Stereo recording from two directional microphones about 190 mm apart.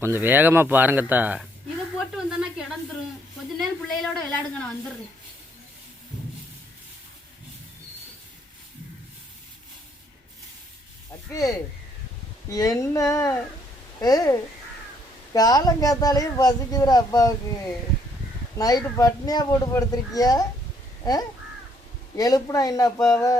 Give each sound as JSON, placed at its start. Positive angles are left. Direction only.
{"t": 0.0, "sound": "speech", "side_deg": -10}
{"t": 2.1, "sound": "a sound", "side_deg": 0}
{"t": 3.9, "sound": "a woman's voice", "side_deg": 5}
{"t": 11.3, "sound": "speech", "side_deg": 20}
{"t": 18.5, "sound": "speech", "side_deg": 20}
{"t": 21.0, "sound": "crow", "side_deg": 20}
{"t": 22.1, "sound": "speech", "side_deg": 20}
{"t": 23.0, "sound": "a woman's voice", "side_deg": 0}